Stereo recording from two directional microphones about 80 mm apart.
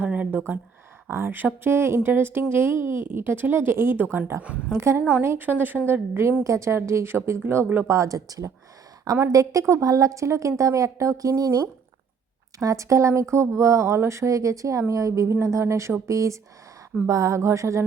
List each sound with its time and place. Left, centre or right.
0.0 s speech: centre; by 17.8 s right